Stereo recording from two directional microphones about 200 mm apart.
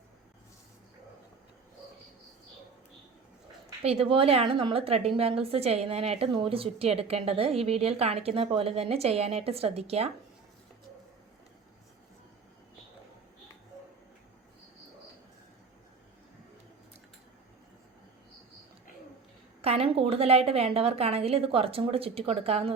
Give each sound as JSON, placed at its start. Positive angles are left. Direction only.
{"t": 3.8, "sound": "a woman's voice", "side_deg": -30}
{"t": 19.6, "sound": "a woman's voice", "side_deg": -30}